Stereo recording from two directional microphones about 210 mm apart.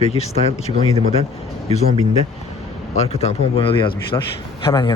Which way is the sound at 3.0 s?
30° left (ahead or behind).